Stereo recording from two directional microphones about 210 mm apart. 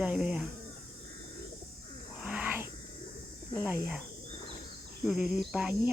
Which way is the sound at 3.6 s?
10° right (ahead or behind).